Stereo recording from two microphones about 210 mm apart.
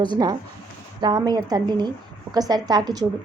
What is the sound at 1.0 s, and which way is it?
A woman's voice, 20° right (ahead or behind).